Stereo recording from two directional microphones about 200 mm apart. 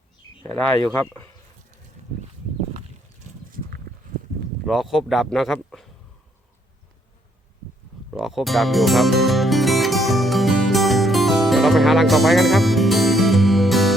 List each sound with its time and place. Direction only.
0.9 s speech: 10° left (ahead or behind)
2.0 s a sound: 35° right (ahead or behind)
4.6 s speech: centre (ahead or behind)
8.1 s music: centre (ahead or behind)